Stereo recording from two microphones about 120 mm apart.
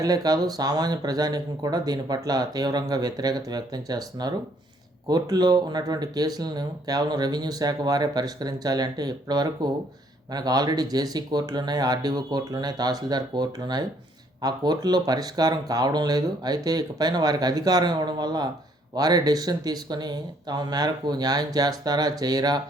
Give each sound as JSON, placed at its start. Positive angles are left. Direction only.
{"t": 0.0, "sound": "speech", "side_deg": -30}